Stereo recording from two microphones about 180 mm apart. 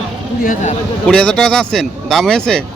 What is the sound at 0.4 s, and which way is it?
Speech, 45° left (ahead or behind).